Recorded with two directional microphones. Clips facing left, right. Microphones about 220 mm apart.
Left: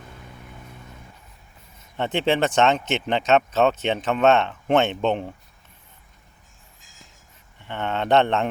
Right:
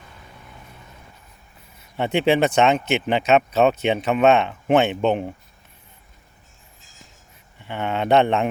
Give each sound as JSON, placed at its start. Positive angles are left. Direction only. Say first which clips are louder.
{"t": 2.0, "sound": "speech", "louder": "right 3 dB", "side_deg": -10}
{"t": 7.7, "sound": "speech", "louder": "right 2 dB", "side_deg": -10}